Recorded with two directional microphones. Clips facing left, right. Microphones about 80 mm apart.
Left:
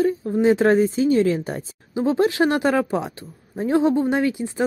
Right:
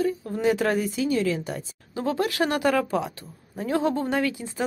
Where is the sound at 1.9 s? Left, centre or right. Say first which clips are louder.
Left 6 dB; left.